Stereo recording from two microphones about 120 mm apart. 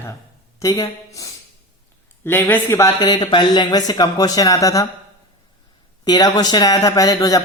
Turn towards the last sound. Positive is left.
turn(degrees=30)  # may be behind; listen again after turning